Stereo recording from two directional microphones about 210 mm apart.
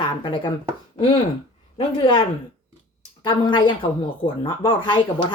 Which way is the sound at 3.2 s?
20° left (ahead or behind).